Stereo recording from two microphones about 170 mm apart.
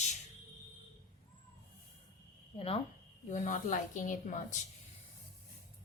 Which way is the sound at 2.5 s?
35° left (ahead or behind).